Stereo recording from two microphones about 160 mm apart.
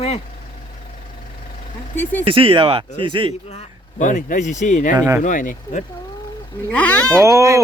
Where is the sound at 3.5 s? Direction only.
45° left (ahead or behind).